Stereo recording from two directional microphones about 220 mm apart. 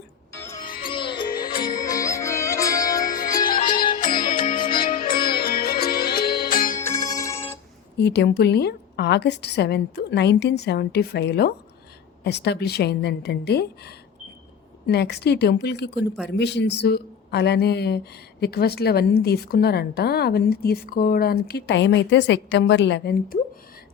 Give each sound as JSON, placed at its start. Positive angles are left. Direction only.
{"t": 0.9, "sound": "music", "side_deg": 20}
{"t": 1.5, "sound": "music", "side_deg": 40}
{"t": 1.8, "sound": "music", "side_deg": 15}
{"t": 3.0, "sound": "music", "side_deg": 40}
{"t": 6.7, "sound": "music", "side_deg": 15}
{"t": 7.9, "sound": "a man's voice", "side_deg": 50}